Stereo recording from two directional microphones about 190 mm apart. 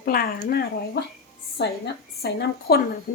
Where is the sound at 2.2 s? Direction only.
55° left (ahead or behind).